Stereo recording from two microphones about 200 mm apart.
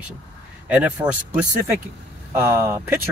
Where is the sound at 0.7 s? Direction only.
5° right (ahead or behind).